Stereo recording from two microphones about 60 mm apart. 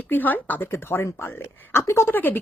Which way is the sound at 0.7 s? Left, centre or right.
Left.